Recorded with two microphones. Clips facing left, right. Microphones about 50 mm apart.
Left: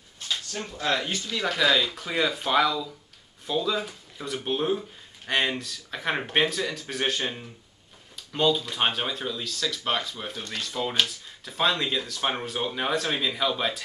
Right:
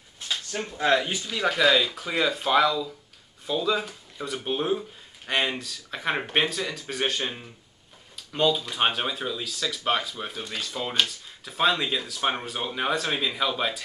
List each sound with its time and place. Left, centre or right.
0.5 s speech: right
1.0 s speech: centre